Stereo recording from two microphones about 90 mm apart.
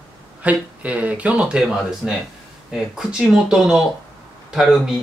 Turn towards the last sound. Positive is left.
turn(degrees=-5)  # may be behind; listen again after turning